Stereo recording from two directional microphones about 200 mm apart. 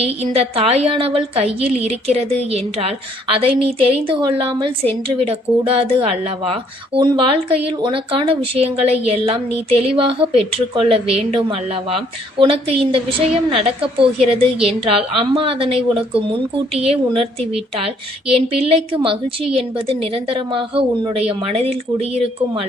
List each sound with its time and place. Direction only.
0.0 s speech: 30° right (ahead or behind)